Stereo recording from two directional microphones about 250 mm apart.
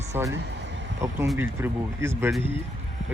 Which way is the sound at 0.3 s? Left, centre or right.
Right.